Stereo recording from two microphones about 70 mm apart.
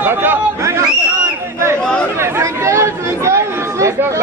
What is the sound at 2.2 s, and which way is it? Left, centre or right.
Chatter, right.